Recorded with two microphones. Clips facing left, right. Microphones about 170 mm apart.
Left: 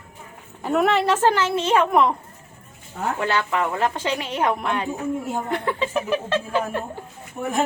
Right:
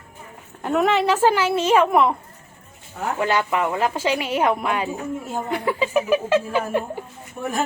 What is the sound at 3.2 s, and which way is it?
A woman's voice, 15° right (ahead or behind).